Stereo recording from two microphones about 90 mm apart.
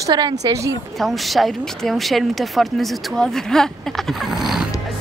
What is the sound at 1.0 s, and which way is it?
A woman's voice, centre (ahead or behind).